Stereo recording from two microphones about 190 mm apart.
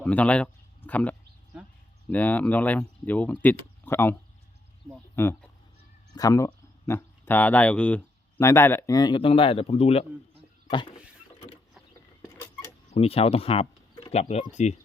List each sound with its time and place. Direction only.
0.0 s speech: 5° left (ahead or behind); by 10.1 s 35° left (ahead or behind)
12.9 s speech: 30° left (ahead or behind)